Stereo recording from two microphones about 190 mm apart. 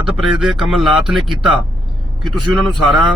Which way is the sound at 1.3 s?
25° right (ahead or behind).